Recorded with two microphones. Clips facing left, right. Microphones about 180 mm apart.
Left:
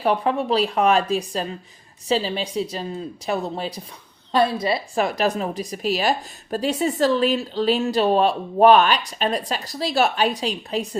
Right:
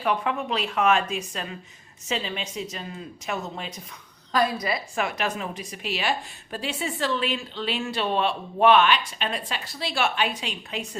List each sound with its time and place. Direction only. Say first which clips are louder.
0.0 s a woman's voice: left 5 dB; 35° left (ahead or behind)